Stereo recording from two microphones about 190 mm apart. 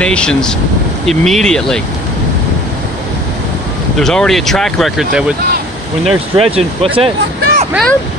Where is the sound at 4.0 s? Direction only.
5° left (ahead or behind).